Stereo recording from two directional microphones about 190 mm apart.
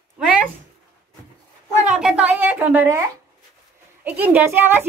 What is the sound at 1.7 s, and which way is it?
Speech, 40° right (ahead or behind).